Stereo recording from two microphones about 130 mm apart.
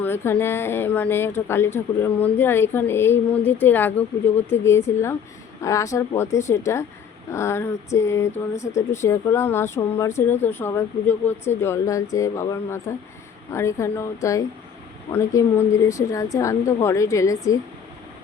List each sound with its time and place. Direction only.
0.0 s a woman's voice: 20° left (ahead or behind)